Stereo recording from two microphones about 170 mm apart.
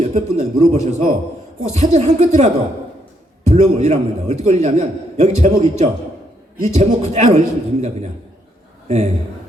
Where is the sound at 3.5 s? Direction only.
40° right (ahead or behind).